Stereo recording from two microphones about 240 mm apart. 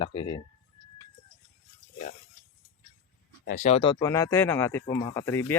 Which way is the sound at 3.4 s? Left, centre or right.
Left.